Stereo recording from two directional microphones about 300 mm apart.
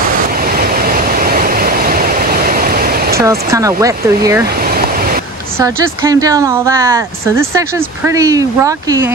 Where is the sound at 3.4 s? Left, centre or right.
Centre.